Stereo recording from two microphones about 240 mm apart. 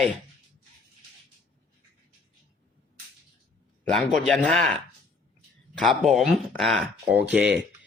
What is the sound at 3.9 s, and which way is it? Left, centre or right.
A man's voice, centre.